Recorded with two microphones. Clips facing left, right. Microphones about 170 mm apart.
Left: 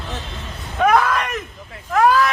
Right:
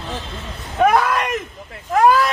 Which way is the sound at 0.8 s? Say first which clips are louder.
Right 1 dB; 15° right (ahead or behind).